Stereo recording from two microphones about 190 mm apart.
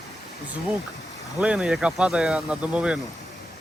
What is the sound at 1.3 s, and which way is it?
Speech, 5° right (ahead or behind).